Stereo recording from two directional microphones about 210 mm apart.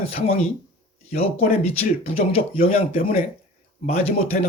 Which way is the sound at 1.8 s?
30° left (ahead or behind).